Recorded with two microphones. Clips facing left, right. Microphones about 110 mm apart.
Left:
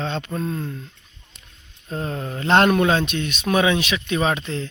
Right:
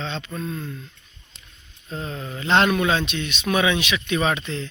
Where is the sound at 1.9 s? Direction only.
45° left (ahead or behind).